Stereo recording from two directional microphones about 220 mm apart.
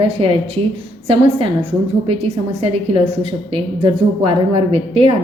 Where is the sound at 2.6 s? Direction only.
25° right (ahead or behind).